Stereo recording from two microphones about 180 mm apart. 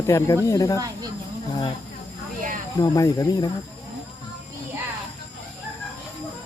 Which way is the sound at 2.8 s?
20° left (ahead or behind).